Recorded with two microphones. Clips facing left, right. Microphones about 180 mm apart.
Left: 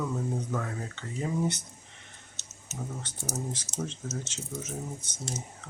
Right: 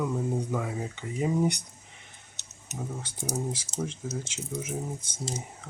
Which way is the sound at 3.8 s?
10° right (ahead or behind).